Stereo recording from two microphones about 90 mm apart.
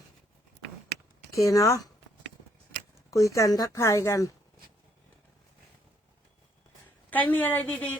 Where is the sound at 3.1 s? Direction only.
35° left (ahead or behind).